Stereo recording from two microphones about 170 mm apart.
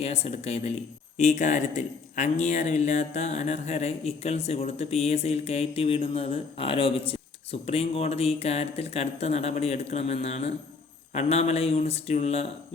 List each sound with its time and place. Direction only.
0.0 s speech: 35° left (ahead or behind)